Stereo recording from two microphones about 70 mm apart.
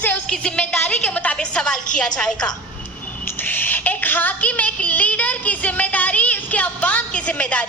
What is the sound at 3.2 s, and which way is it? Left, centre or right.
Child singing, left.